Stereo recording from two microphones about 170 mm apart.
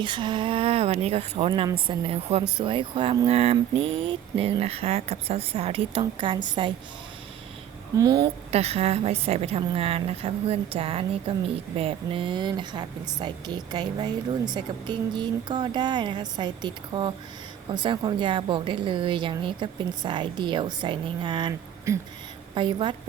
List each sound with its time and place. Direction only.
0.0 s speech: 30° right (ahead or behind)
7.9 s a woman's voice: 25° right (ahead or behind)
8.4 s a woman's voice: 40° right (ahead or behind)
21.9 s speech: 15° right (ahead or behind)
22.5 s a woman's voice: 30° right (ahead or behind)